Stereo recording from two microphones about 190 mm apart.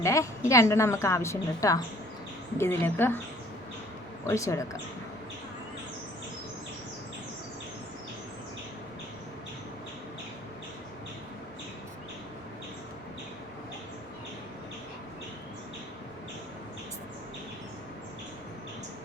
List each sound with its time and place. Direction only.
0.0 s a woman's voice: 15° left (ahead or behind)
4.2 s a woman's voice: 15° left (ahead or behind)